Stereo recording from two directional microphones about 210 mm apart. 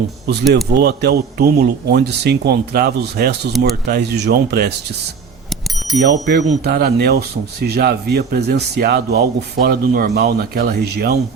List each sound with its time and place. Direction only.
0.5 s speech: 50° right (ahead or behind)
5.5 s bicycle bell: centre (ahead or behind)
6.0 s speech: 55° right (ahead or behind)